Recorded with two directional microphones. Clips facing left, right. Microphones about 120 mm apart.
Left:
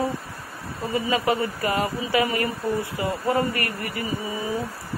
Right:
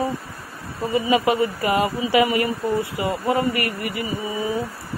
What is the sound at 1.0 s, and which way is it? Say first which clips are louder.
A woman's voice: right 4 dB; 20° right (ahead or behind).